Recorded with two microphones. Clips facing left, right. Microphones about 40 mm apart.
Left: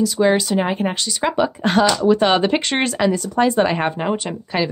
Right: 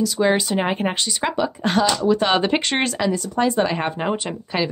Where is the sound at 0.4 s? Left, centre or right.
Centre.